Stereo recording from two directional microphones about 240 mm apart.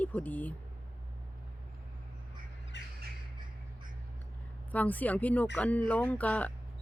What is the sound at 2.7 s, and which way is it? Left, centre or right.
Squawk, left.